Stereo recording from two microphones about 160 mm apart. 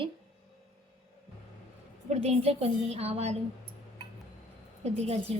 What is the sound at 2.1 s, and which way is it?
A woman's voice, 40° right (ahead or behind).